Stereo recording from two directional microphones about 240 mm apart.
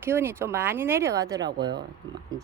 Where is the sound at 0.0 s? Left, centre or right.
Centre.